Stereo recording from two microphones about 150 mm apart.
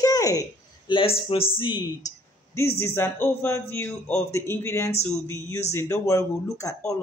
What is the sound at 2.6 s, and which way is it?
Speech, 15° left (ahead or behind).